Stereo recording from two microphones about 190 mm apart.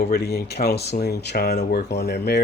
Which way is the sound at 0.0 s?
55° left (ahead or behind).